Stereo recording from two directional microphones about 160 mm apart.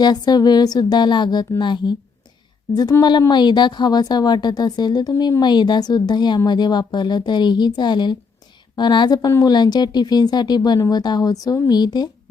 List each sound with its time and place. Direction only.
0.0 s a woman's voice: 25° left (ahead or behind)